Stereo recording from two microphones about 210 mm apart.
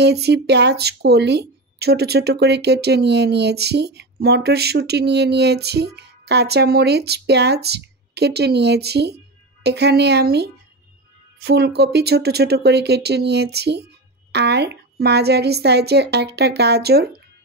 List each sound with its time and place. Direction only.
0.0 s speech: 50° right (ahead or behind)